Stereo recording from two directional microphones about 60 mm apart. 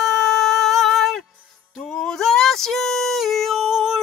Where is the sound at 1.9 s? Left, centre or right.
Centre.